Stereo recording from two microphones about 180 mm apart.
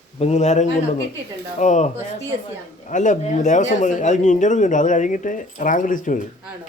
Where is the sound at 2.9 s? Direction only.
45° left (ahead or behind).